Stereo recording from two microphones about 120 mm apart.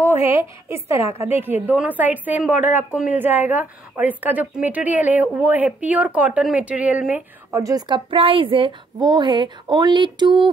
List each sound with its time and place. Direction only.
0.2 s a woman's voice: 55° left (ahead or behind)
0.7 s a woman's voice: 20° right (ahead or behind)
0.9 s a woman's voice: 55° left (ahead or behind)
1.4 s a woman's voice: 15° right (ahead or behind)
7.5 s a woman's voice: 25° right (ahead or behind)
7.9 s a woman's voice: 50° right (ahead or behind)